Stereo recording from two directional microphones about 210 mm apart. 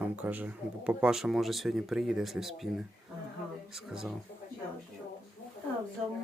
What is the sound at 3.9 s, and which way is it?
Speech, centre (ahead or behind).